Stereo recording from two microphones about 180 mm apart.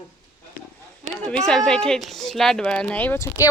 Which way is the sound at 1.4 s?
5° left (ahead or behind).